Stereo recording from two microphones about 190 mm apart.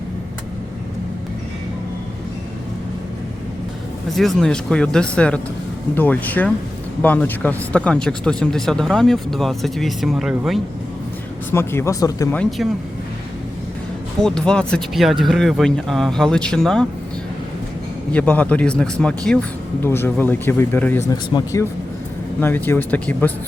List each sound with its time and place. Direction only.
4.1 s speech: centre (ahead or behind)
11.5 s speech: 15° left (ahead or behind)
12.4 s speech: centre (ahead or behind)
14.2 s speech: 5° left (ahead or behind)
18.1 s speech: 10° left (ahead or behind)